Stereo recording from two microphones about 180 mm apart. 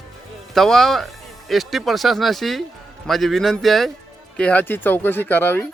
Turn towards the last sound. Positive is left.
turn(degrees=10)  # may be behind; listen again after turning